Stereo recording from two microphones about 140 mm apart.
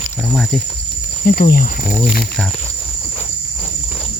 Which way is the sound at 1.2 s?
90° left.